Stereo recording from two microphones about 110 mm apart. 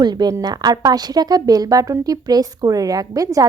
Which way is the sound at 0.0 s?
40° right (ahead or behind).